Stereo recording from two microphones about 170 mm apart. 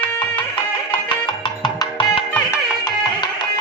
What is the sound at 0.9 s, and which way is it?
Music, 25° left (ahead or behind).